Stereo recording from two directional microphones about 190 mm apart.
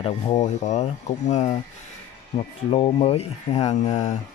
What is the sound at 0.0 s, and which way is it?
Speech, 30° left (ahead or behind).